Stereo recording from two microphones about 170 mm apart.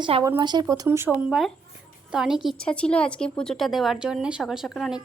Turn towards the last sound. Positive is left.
turn(degrees=0)  # may be behind; listen again after turning